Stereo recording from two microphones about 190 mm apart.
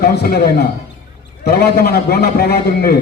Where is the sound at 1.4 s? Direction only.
55° left (ahead or behind).